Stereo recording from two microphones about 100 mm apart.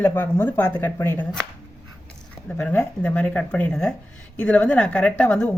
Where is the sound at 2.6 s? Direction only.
15° left (ahead or behind).